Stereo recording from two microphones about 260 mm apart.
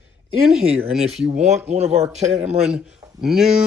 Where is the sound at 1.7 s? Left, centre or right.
Right.